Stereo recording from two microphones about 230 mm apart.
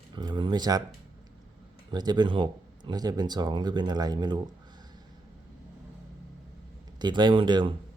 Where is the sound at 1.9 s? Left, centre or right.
Centre.